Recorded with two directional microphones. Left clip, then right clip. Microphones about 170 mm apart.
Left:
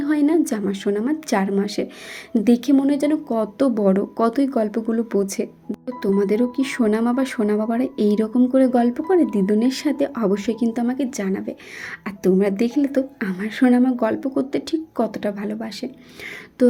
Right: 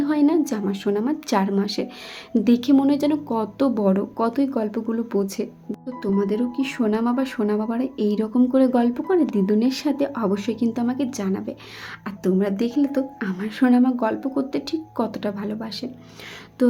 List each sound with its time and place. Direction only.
0.0 s a woman's voice: 10° left (ahead or behind)
8.4 s a woman's voice: 5° left (ahead or behind)